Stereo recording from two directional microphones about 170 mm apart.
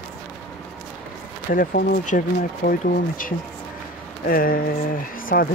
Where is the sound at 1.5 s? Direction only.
60° left (ahead or behind).